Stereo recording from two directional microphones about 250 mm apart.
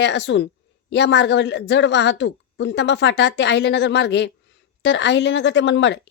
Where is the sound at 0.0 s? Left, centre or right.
Left.